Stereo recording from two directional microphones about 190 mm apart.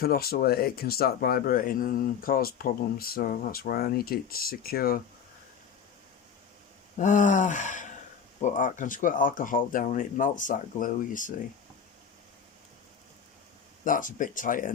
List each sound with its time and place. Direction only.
0.0 s speech: 55° left (ahead or behind)
7.0 s a sound: 40° left (ahead or behind)
8.4 s speech: 40° left (ahead or behind)
13.8 s speech: 45° left (ahead or behind)